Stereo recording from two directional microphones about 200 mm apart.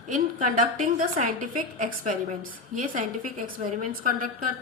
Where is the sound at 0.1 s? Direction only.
40° right (ahead or behind).